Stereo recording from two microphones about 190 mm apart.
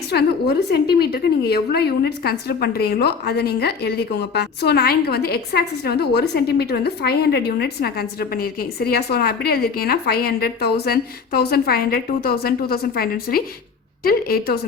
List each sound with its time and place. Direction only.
0.1 s a woman's voice: 60° left (ahead or behind)